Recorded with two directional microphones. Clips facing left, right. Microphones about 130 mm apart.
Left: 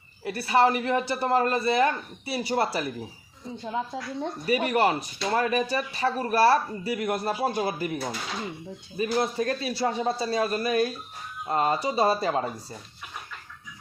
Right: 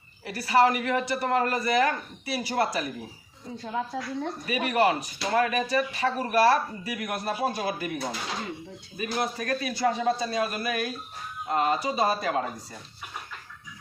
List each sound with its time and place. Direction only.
0.3 s speech: 25° left (ahead or behind)
3.6 s speech: 20° left (ahead or behind)
4.4 s speech: 35° left (ahead or behind)
9.0 s speech: 30° left (ahead or behind)